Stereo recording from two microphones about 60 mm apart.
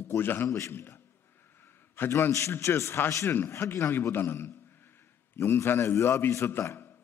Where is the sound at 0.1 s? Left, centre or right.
Left.